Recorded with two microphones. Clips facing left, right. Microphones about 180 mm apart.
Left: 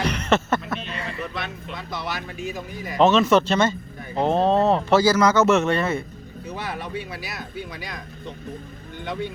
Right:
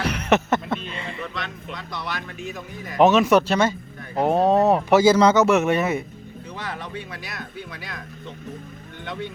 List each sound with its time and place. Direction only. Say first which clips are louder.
0.0 s a sound: right 1 dB; 10° right (ahead or behind); by 1.2 s 25° right (ahead or behind)
1.4 s speech: left 1 dB; 5° left (ahead or behind)
3.0 s speech: right 1 dB; 10° right (ahead or behind)
5.1 s a man's voice: right 2 dB; 30° right (ahead or behind)
5.4 s speech: right 1 dB; 10° right (ahead or behind)
6.5 s speech: left 3 dB; 10° left (ahead or behind)
9.0 s speech: left 3 dB; centre (ahead or behind)